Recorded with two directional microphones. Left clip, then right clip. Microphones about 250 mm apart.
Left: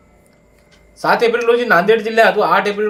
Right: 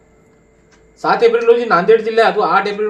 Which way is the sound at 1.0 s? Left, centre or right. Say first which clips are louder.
Right 2 dB; left.